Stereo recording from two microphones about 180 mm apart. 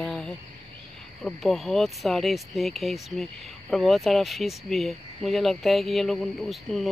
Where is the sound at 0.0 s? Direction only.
5° left (ahead or behind).